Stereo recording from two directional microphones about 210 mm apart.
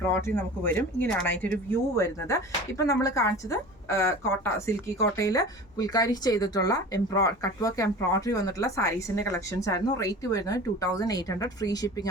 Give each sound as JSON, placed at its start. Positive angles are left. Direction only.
{"t": 0.0, "sound": "speech", "side_deg": 10}